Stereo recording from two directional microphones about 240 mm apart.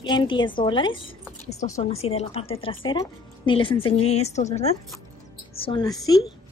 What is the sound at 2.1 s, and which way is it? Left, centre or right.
A woman's voice, left.